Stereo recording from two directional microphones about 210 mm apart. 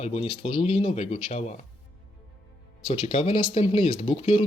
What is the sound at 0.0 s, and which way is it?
Speech, 30° left (ahead or behind).